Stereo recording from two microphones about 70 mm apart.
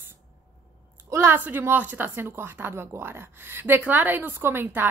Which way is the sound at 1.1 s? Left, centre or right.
Right.